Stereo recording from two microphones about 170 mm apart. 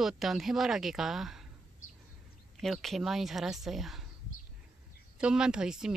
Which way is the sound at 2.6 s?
Centre (ahead or behind).